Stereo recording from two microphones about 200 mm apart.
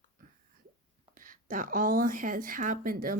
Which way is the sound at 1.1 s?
45° right (ahead or behind).